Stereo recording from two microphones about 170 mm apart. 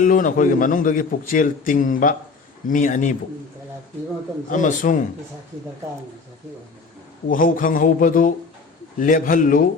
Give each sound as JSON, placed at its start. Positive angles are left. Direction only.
{"t": 0.0, "sound": "a man's voice", "side_deg": 50}
{"t": 4.4, "sound": "a man's voice", "side_deg": 50}
{"t": 7.3, "sound": "a man's voice", "side_deg": 55}